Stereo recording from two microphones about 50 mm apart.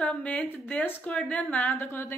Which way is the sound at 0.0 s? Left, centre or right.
Left.